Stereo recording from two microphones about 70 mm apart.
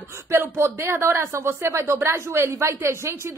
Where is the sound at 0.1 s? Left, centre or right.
Right.